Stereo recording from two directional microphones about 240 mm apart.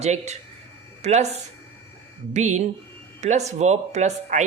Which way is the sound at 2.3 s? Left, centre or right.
Right.